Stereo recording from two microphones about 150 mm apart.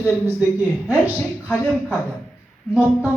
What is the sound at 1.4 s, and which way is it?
Speech, 15° left (ahead or behind).